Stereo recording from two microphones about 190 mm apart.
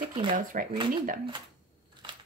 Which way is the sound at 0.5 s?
45° right (ahead or behind).